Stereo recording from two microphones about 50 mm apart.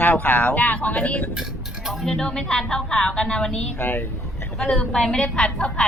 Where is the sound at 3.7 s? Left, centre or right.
Left.